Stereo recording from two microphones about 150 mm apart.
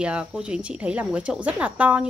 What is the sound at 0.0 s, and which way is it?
Speech, 5° right (ahead or behind).